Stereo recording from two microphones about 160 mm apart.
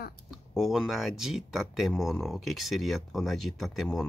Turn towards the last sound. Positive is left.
turn(degrees=0)  # may be behind; listen again after turning